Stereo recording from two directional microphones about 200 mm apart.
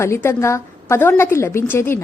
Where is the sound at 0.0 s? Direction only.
15° left (ahead or behind).